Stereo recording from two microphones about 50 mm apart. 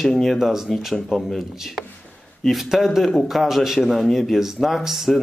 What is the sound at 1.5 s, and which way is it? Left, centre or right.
Speech, centre.